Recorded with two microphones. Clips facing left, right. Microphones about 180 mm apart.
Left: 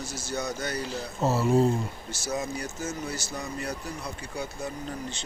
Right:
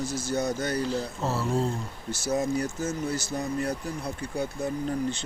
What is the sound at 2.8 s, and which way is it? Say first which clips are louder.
Speech: right 4 dB; 55° right (ahead or behind).